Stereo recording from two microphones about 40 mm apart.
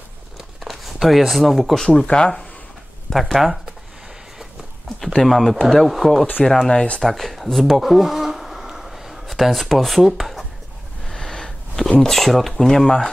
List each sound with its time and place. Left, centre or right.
0.6 s speech: centre
2.0 s speech: left
3.1 s speech: centre
5.0 s speech: centre
7.4 s insect: centre
11.1 s a sound: centre
12.0 s speech: centre